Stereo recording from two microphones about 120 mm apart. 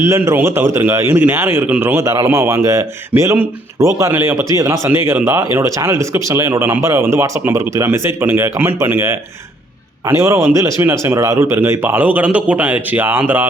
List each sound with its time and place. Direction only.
0.0 s speech: 20° right (ahead or behind)